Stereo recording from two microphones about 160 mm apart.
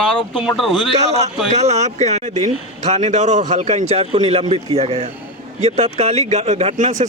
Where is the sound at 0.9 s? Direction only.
45° right (ahead or behind).